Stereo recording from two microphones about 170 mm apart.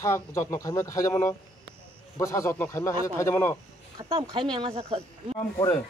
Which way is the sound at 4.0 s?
30° right (ahead or behind).